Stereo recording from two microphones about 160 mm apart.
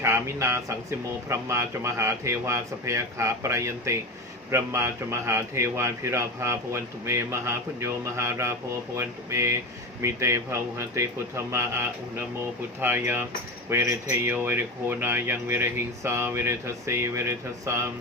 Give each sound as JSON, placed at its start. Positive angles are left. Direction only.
{"t": 0.0, "sound": "speech", "side_deg": -15}